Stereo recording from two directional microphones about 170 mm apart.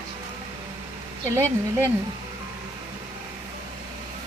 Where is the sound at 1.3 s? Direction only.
15° right (ahead or behind).